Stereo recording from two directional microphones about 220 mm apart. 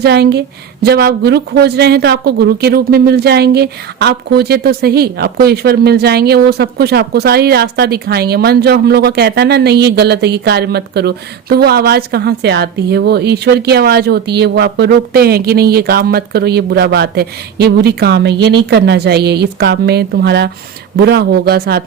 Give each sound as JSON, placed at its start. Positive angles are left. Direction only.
{"t": 0.0, "sound": "a woman's voice", "side_deg": -45}